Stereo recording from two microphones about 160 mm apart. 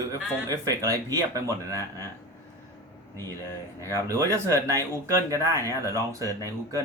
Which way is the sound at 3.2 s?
20° right (ahead or behind).